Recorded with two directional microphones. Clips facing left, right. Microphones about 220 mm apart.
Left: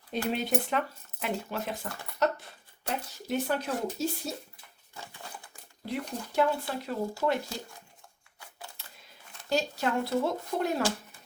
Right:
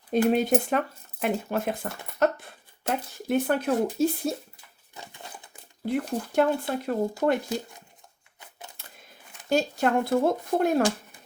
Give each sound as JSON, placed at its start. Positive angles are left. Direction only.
{"t": 0.1, "sound": "speech", "side_deg": -50}
{"t": 4.9, "sound": "crumpling", "side_deg": -20}
{"t": 5.9, "sound": "speech", "side_deg": -50}
{"t": 8.4, "sound": "a sound", "side_deg": -20}
{"t": 9.5, "sound": "speech", "side_deg": -50}